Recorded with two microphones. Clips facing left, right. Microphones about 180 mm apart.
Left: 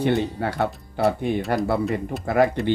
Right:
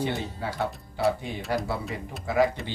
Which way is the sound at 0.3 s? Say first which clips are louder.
Left 6 dB; 60° left (ahead or behind).